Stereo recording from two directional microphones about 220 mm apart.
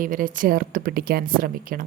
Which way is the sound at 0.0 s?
40° right (ahead or behind).